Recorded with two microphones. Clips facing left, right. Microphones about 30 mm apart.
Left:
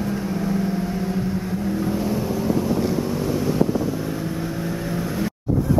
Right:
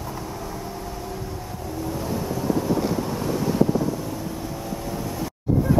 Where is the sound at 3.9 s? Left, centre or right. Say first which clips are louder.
Left 3 dB; left.